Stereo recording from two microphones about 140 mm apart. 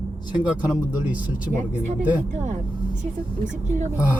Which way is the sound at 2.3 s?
60° right (ahead or behind).